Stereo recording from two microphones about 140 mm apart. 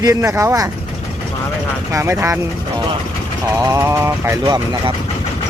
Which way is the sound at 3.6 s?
25° right (ahead or behind).